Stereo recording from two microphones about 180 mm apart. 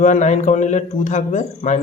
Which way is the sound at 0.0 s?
40° left (ahead or behind).